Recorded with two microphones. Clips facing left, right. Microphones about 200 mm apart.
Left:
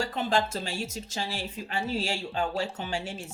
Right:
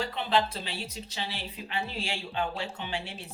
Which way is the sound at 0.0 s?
45° left (ahead or behind).